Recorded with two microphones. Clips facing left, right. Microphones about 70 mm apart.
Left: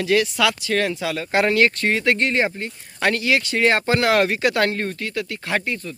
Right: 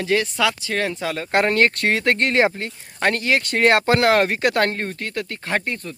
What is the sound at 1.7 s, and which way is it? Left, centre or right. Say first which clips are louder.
Speech: even; right.